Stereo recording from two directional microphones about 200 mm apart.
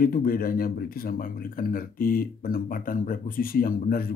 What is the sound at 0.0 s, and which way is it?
Speech, 45° left (ahead or behind).